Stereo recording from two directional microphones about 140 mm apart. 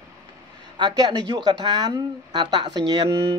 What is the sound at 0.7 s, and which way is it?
Speech, 30° right (ahead or behind).